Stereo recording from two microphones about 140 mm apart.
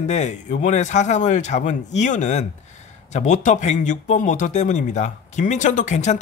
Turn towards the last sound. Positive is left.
turn(degrees=60)  # may be behind; listen again after turning